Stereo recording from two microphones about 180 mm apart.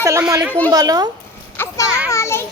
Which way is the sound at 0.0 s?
15° right (ahead or behind).